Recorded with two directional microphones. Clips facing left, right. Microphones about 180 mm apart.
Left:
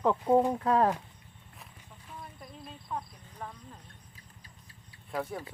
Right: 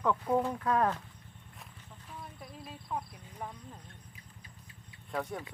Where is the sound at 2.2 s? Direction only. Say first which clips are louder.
Even; 5° right (ahead or behind).